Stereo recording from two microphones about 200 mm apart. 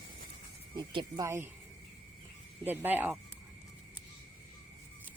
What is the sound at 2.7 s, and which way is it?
Speech, 10° right (ahead or behind).